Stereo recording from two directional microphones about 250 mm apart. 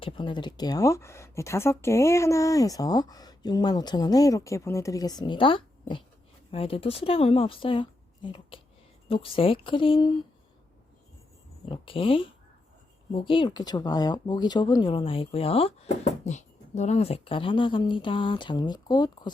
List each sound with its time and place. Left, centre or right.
0.0 s speech: centre
11.7 s speech: left